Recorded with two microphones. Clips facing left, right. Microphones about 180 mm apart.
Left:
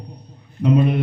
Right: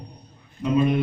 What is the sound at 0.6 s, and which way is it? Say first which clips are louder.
Speech: left 4 dB; 65° left (ahead or behind).